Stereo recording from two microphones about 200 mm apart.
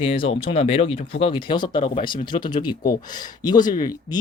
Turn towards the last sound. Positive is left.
turn(degrees=20)  # may be behind; listen again after turning